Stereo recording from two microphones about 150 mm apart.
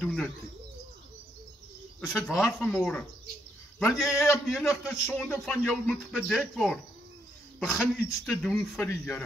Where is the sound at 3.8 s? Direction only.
20° left (ahead or behind).